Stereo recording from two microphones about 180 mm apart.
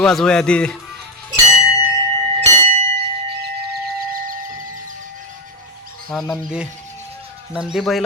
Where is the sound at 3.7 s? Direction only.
55° right (ahead or behind).